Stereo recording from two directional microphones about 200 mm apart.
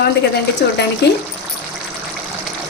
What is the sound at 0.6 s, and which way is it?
Speech, 55° left (ahead or behind).